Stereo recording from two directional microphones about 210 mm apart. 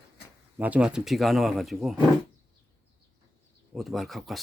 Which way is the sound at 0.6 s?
5° right (ahead or behind).